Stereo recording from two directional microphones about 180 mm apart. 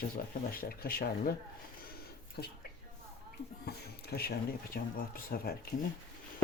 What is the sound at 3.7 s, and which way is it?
Speech, 60° left (ahead or behind).